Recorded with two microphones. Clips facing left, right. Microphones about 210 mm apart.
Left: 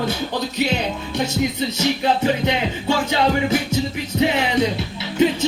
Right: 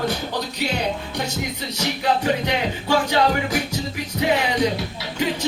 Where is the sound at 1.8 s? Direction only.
25° left (ahead or behind).